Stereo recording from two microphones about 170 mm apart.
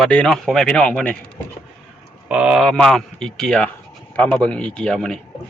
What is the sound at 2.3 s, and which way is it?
Speech, 5° right (ahead or behind).